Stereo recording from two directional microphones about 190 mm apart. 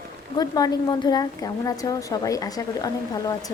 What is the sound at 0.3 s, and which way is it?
A woman's voice, 20° left (ahead or behind).